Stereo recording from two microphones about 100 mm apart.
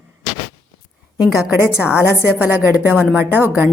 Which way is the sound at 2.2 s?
15° right (ahead or behind).